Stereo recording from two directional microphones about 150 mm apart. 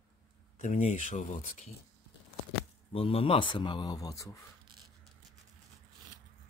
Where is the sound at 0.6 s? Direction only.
55° left (ahead or behind).